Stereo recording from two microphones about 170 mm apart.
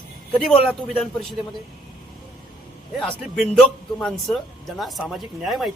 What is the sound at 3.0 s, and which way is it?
A man's voice, 5° left (ahead or behind).